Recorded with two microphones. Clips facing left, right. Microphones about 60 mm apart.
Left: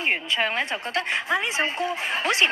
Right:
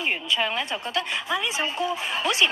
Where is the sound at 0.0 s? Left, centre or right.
Left.